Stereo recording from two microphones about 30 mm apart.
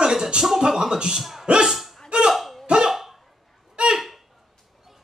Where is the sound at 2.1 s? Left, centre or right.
Right.